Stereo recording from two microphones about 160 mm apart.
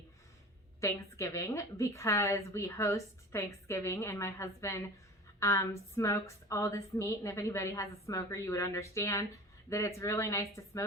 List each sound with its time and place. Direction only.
0.8 s a woman's voice: 20° left (ahead or behind)